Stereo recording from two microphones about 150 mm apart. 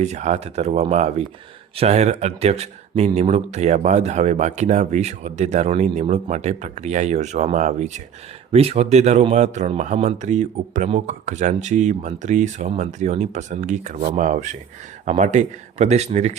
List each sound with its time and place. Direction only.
0.0 s a man's voice: 50° right (ahead or behind)